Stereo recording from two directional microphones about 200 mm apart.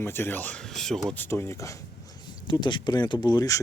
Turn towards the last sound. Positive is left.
turn(degrees=20)  # may be behind; listen again after turning